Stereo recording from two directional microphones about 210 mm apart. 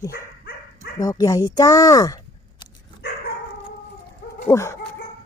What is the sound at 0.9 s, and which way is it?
Speech, 20° left (ahead or behind).